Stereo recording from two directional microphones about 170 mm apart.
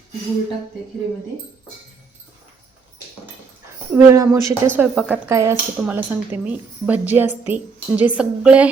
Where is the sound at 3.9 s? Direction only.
20° right (ahead or behind).